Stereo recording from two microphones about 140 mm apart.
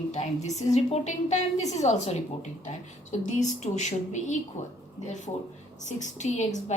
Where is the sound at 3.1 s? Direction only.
60° left (ahead or behind).